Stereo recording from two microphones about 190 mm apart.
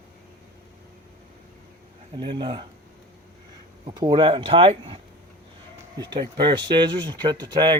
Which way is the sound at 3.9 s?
25° right (ahead or behind).